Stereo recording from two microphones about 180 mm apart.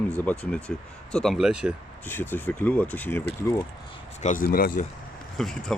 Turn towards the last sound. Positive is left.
turn(degrees=0)  # may be behind; listen again after turning